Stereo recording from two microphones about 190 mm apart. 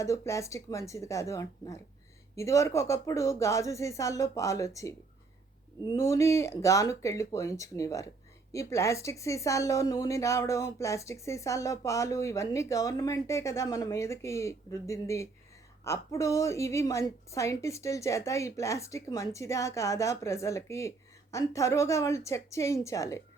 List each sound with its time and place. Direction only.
0.0 s a woman's voice: 15° left (ahead or behind)